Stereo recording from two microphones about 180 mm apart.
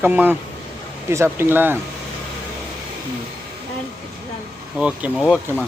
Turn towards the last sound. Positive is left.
turn(degrees=0)  # may be behind; listen again after turning